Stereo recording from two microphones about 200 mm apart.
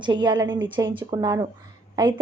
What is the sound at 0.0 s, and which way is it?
A woman's voice, 25° right (ahead or behind).